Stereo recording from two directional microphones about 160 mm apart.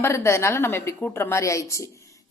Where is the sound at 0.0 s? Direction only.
15° left (ahead or behind).